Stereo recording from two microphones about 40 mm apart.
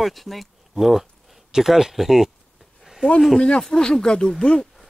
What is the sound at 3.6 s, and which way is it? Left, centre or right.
Speech, centre.